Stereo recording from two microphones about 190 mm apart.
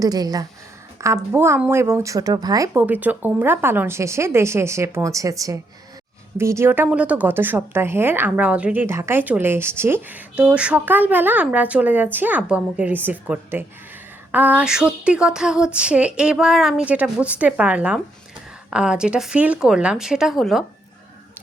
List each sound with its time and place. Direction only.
0.0 s a woman's voice: 20° right (ahead or behind); by 20.7 s centre (ahead or behind)